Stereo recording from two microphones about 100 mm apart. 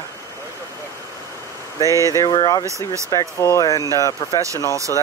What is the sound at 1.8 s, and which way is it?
Speech, 35° left (ahead or behind).